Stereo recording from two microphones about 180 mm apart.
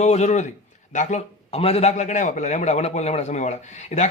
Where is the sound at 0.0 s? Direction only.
40° left (ahead or behind).